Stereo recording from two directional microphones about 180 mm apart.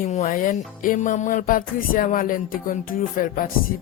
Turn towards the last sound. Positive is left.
turn(degrees=50)  # may be behind; listen again after turning